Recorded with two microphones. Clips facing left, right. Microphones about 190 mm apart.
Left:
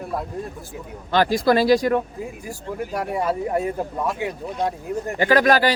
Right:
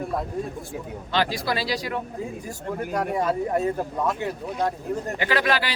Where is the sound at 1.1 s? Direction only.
50° left (ahead or behind).